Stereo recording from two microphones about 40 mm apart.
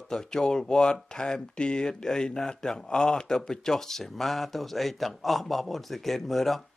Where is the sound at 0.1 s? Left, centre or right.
Centre.